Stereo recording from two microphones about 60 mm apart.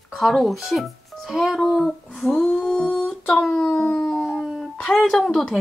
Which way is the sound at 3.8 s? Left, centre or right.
Left.